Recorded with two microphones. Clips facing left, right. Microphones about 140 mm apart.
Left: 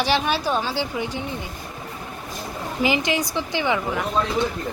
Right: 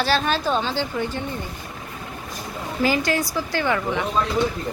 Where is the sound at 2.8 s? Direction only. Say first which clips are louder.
Right 1 dB; 20° left (ahead or behind).